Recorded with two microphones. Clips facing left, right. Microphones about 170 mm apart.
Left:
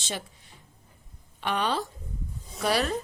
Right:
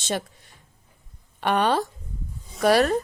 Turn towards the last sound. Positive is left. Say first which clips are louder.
# right 7 dB
turn(degrees=-55)  # may be behind; listen again after turning